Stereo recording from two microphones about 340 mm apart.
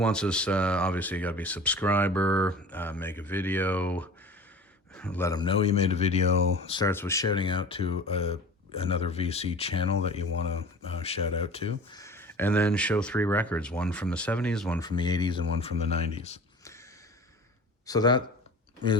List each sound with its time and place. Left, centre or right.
0.0 s speech: centre
17.8 s speech: centre